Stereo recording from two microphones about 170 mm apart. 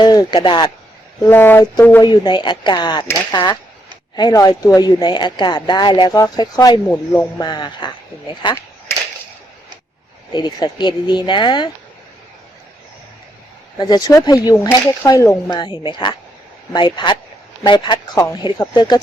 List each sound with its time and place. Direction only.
0.0 s speech: 25° left (ahead or behind)
1.3 s speech: 10° left (ahead or behind)
2.0 s speech: 25° left (ahead or behind)
10.3 s speech: 25° left (ahead or behind)
13.7 s speech: 25° left (ahead or behind)